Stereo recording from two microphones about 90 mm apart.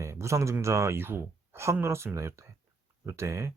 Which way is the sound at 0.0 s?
35° right (ahead or behind).